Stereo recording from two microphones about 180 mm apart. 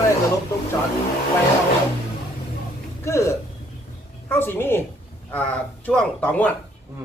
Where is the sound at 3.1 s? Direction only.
15° left (ahead or behind).